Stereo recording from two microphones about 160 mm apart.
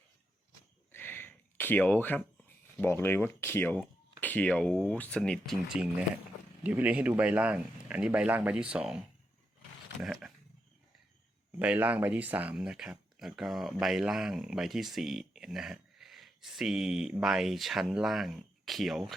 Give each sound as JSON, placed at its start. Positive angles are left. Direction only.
{"t": 0.9, "sound": "a sound", "side_deg": 15}
{"t": 2.7, "sound": "speech", "side_deg": 15}
{"t": 5.7, "sound": "speech", "side_deg": -5}
{"t": 11.6, "sound": "speech", "side_deg": -10}